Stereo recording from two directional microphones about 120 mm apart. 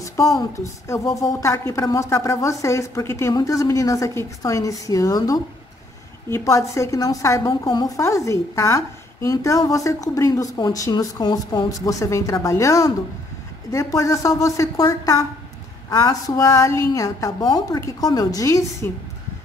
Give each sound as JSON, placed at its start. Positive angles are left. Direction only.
{"t": 0.0, "sound": "a woman's voice", "side_deg": 25}